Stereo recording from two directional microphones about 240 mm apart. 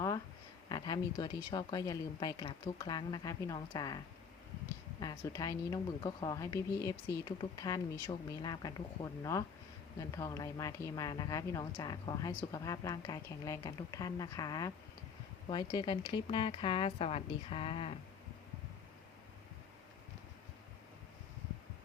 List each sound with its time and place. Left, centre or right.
0.7 s a woman's voice: centre